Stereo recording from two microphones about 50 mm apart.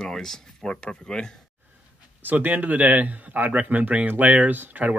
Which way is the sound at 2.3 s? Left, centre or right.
Right.